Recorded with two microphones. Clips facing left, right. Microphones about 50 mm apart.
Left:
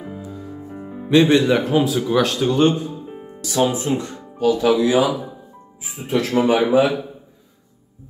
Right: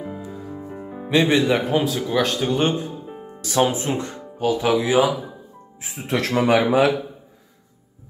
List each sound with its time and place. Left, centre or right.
0.7 s music: centre
1.7 s speech: centre
2.4 s speech: centre
3.3 s speech: right
4.5 s speech: right
5.8 s speech: right